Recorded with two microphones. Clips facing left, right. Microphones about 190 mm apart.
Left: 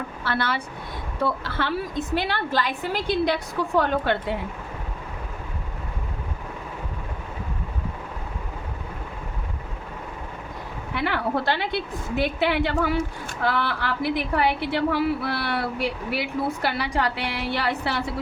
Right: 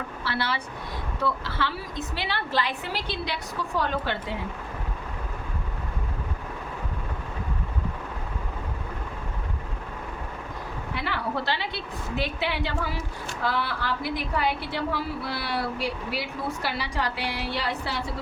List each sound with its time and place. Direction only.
0.3 s a woman's voice: 50° left (ahead or behind)
10.9 s a woman's voice: 60° left (ahead or behind)
16.6 s a woman's voice: 60° left (ahead or behind)